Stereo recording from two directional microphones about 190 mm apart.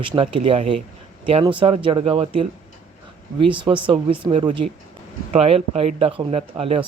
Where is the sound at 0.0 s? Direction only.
30° right (ahead or behind).